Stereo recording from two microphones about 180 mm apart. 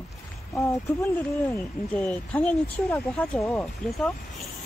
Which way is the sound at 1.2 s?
10° left (ahead or behind).